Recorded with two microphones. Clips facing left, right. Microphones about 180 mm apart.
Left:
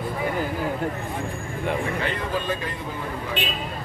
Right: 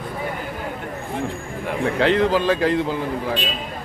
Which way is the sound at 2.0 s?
90° right.